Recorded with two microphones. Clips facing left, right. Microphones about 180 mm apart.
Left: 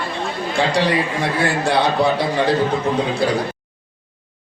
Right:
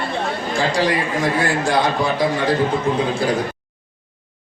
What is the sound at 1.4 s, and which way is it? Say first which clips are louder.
A man's voice: left 1 dB; 65° left (ahead or behind).